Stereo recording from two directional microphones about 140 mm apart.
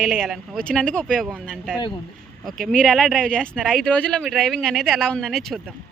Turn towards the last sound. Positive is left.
turn(degrees=0)  # may be behind; listen again after turning